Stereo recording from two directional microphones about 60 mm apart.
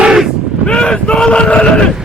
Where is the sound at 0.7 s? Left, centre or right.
Centre.